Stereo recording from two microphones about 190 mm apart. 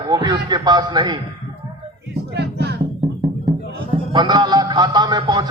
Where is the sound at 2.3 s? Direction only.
60° right (ahead or behind).